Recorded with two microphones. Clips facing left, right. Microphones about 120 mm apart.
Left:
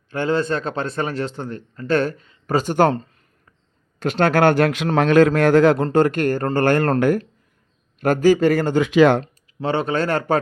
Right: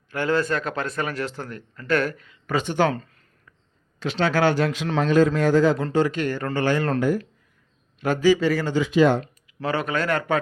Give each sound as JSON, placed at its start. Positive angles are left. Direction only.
{"t": 0.1, "sound": "speech", "side_deg": 25}
{"t": 2.9, "sound": "a sound", "side_deg": 30}
{"t": 4.0, "sound": "a man's voice", "side_deg": 55}
{"t": 5.9, "sound": "speech", "side_deg": 55}
{"t": 7.9, "sound": "speech", "side_deg": 50}
{"t": 8.9, "sound": "speech", "side_deg": 85}
{"t": 9.2, "sound": "speech", "side_deg": 25}